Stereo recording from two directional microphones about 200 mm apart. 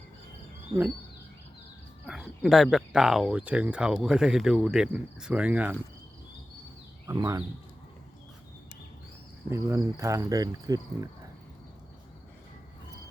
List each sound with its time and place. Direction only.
2.0 s speech: centre (ahead or behind)
7.1 s cricket: 15° right (ahead or behind)
9.5 s cricket: 15° right (ahead or behind)